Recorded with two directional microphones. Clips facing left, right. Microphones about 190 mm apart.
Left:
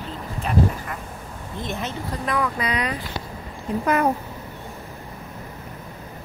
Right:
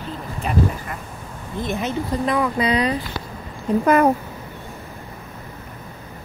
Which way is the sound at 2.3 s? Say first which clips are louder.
Right 3 dB; 25° right (ahead or behind).